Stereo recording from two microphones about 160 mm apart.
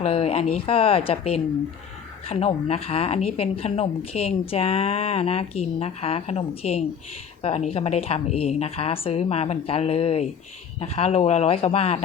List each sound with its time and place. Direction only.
0.0 s speech: 35° left (ahead or behind)